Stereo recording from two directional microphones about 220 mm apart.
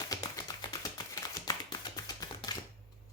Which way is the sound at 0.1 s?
15° left (ahead or behind).